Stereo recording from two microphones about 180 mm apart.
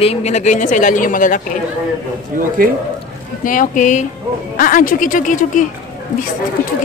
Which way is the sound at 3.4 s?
45° left (ahead or behind).